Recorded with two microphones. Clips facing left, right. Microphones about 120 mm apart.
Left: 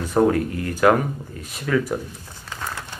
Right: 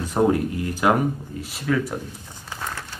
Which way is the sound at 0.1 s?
15° right (ahead or behind).